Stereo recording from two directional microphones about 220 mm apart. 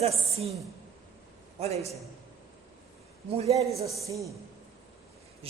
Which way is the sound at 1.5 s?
30° right (ahead or behind).